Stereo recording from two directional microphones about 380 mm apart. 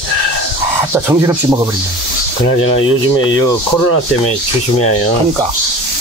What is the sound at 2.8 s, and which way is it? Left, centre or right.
Speech, left.